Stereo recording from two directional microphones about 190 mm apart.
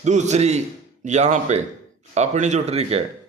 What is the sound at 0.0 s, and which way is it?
Speech, 40° right (ahead or behind).